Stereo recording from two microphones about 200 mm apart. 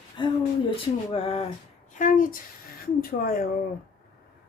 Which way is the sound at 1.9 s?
40° left (ahead or behind).